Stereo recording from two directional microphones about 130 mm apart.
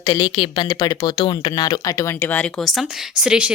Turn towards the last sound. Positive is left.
turn(degrees=-10)  # may be behind; listen again after turning